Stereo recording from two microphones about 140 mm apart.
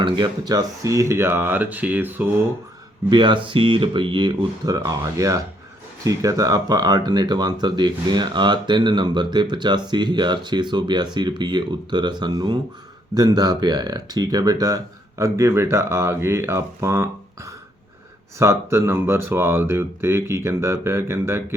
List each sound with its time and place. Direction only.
0.0 s speech: 30° right (ahead or behind); by 2.4 s 15° right (ahead or behind)
3.1 s speech: 35° right (ahead or behind); by 21.4 s 20° right (ahead or behind)